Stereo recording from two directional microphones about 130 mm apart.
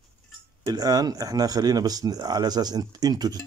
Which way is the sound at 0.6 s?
30° right (ahead or behind).